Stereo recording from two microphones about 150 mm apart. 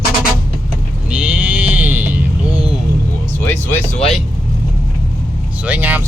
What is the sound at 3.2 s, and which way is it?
Music, 15° left (ahead or behind).